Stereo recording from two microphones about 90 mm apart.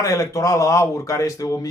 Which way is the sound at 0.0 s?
40° left (ahead or behind).